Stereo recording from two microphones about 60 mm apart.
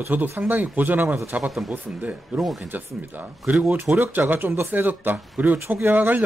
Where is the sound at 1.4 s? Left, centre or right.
Centre.